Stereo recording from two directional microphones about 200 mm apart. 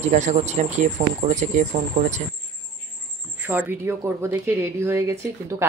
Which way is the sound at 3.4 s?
10° right (ahead or behind).